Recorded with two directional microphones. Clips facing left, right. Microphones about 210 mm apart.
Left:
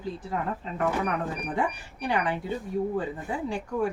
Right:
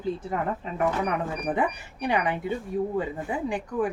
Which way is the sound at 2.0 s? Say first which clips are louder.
Right 2 dB; 20° right (ahead or behind).